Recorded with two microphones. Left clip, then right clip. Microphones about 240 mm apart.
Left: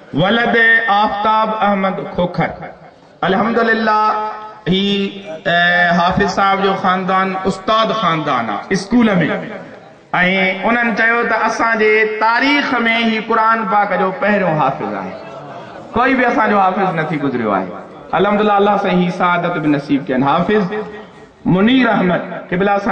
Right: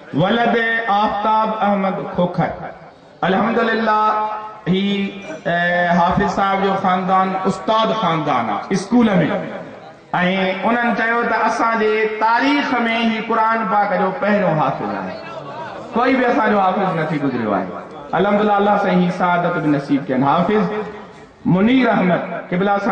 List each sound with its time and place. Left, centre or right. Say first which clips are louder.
0.2 s a man's voice: left 4 dB; centre
15.9 s a man's voice: left 2 dB; centre
18.1 s a man's voice: left 3 dB; centre